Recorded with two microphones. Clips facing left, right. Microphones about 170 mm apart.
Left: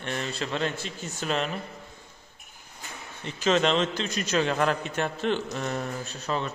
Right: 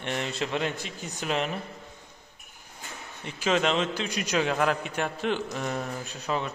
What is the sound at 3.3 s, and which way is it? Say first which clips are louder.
A man's voice: left 2 dB; 10° right (ahead or behind).